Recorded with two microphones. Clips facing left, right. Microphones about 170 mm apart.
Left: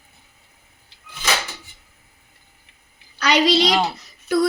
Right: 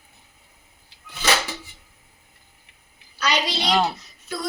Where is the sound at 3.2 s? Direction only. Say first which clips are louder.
Left 8 dB; 90° left.